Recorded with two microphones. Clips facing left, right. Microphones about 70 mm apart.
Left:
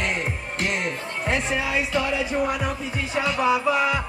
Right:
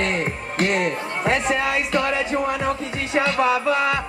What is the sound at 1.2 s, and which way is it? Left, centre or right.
Music, right.